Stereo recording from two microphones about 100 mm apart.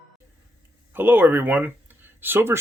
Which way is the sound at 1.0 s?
20° right (ahead or behind).